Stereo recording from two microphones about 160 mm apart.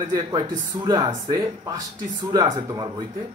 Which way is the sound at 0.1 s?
30° right (ahead or behind).